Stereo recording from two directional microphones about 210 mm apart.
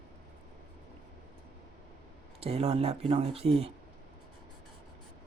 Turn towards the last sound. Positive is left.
turn(degrees=-30)  # may be behind; listen again after turning